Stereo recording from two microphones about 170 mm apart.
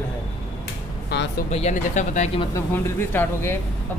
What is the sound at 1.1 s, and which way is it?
Speech, 70° left (ahead or behind).